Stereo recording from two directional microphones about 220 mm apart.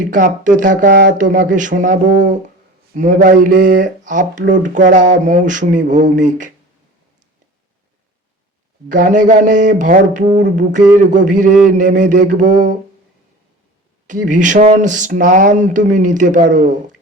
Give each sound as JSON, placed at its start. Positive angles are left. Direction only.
{"t": 0.0, "sound": "speech", "side_deg": -35}
{"t": 8.9, "sound": "speech", "side_deg": -35}
{"t": 14.1, "sound": "speech", "side_deg": -35}